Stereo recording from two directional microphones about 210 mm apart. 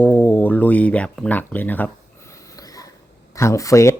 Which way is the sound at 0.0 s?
10° left (ahead or behind).